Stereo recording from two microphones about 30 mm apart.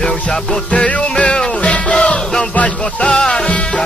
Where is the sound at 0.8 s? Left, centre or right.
Left.